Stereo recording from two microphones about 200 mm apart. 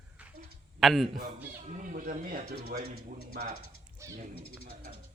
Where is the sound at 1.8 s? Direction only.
40° right (ahead or behind).